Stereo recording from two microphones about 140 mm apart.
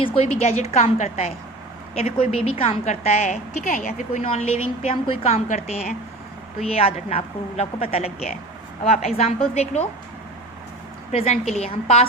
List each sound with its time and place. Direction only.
0.2 s a woman's voice: 50° left (ahead or behind)
4.2 s a woman's voice: 45° left (ahead or behind)
11.1 s a woman's voice: 45° left (ahead or behind)